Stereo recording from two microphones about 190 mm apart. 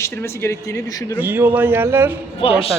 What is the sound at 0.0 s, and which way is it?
Speech, 15° left (ahead or behind).